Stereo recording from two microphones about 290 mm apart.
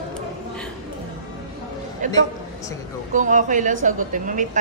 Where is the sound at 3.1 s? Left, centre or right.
Right.